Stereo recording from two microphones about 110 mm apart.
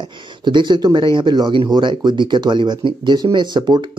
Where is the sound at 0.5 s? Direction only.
45° right (ahead or behind).